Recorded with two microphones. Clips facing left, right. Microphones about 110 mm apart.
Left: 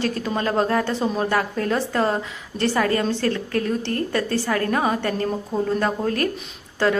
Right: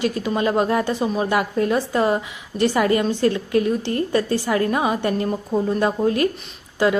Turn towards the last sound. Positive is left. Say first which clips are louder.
# right 2 dB
turn(degrees=-15)  # may be behind; listen again after turning